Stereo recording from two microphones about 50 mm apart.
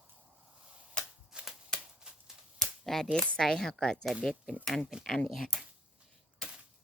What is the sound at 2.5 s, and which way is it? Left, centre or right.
Cap gun, centre.